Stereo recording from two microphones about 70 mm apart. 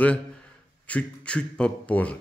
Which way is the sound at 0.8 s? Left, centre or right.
Centre.